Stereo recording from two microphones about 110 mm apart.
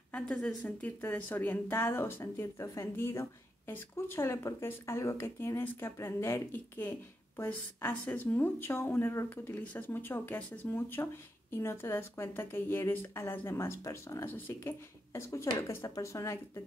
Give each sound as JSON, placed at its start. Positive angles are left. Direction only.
{"t": 0.1, "sound": "a woman's voice", "side_deg": 10}